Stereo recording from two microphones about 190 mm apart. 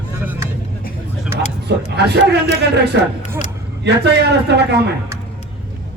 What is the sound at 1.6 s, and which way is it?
A man's voice, 60° right (ahead or behind).